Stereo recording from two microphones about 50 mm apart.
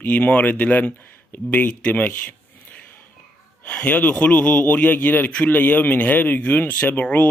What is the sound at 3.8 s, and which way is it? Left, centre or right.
A man's voice, left.